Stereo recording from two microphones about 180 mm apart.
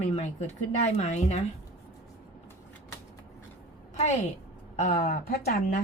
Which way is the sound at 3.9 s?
40° left (ahead or behind).